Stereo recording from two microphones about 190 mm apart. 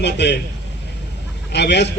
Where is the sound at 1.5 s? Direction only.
65° left (ahead or behind).